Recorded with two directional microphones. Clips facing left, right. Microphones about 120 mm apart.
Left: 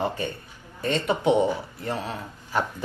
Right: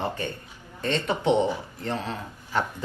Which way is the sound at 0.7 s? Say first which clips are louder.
Left 2 dB; 15° left (ahead or behind).